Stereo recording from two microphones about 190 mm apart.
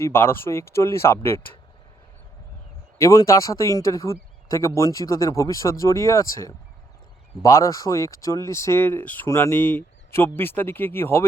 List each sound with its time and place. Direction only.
0.0 s speech: 10° left (ahead or behind)
3.0 s speech: 15° left (ahead or behind)